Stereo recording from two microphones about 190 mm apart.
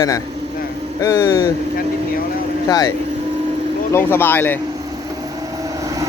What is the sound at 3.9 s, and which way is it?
Speech, 10° left (ahead or behind).